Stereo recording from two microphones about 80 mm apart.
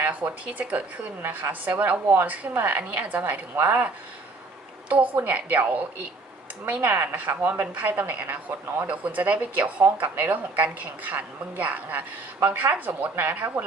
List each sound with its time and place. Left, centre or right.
0.0 s a woman's voice: centre
4.9 s a woman's voice: right